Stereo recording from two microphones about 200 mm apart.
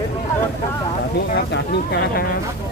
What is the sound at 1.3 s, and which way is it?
Vehicle, 55° left (ahead or behind).